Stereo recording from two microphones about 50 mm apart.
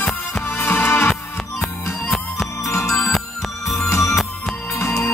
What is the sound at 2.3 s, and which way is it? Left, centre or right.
Music, left.